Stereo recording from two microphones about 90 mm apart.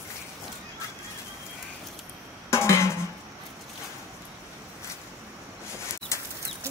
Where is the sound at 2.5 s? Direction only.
30° left (ahead or behind).